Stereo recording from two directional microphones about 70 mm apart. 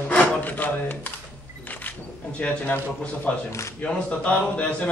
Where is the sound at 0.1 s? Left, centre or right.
Left.